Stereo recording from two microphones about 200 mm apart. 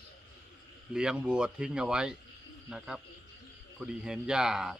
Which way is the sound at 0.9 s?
5° right (ahead or behind).